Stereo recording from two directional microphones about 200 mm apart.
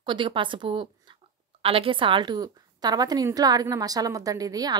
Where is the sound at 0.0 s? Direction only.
25° right (ahead or behind).